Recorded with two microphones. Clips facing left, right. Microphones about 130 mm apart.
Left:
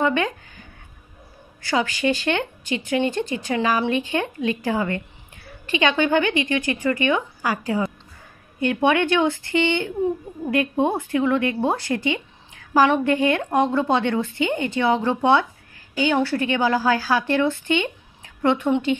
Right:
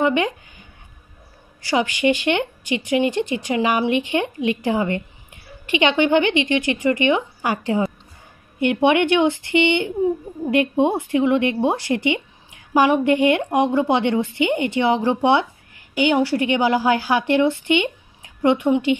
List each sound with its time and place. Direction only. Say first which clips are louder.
0.0 s speech: right 2 dB; 15° right (ahead or behind)
1.6 s a woman's voice: right 3 dB; 15° right (ahead or behind)